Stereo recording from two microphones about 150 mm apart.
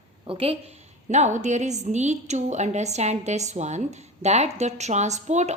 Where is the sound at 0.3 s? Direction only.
40° right (ahead or behind).